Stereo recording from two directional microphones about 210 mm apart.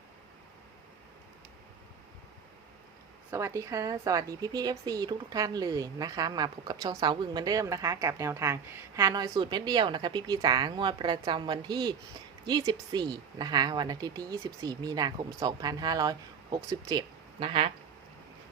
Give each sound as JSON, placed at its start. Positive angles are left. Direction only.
{"t": 3.2, "sound": "a woman's voice", "side_deg": -15}